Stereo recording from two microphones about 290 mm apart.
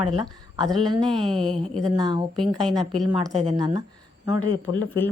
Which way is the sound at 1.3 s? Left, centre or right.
Centre.